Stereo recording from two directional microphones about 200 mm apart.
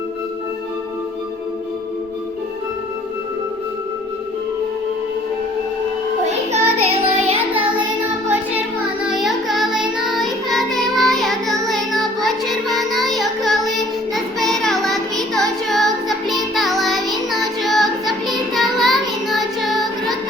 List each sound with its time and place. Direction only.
6.2 s child singing: 30° right (ahead or behind)
9.0 s child singing: centre (ahead or behind)